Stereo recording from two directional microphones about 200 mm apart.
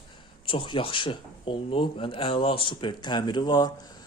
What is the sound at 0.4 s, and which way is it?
A man's voice, 25° left (ahead or behind).